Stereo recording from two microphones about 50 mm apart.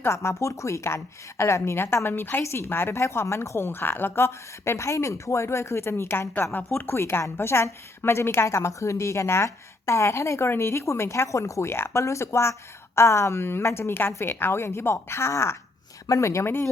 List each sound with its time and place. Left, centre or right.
0.1 s a woman's voice: left
2.4 s a woman's voice: left
3.0 s speech: left
3.7 s a woman's voice: left
16.1 s speech: left